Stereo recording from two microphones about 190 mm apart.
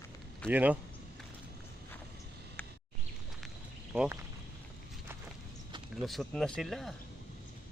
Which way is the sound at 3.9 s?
5° right (ahead or behind).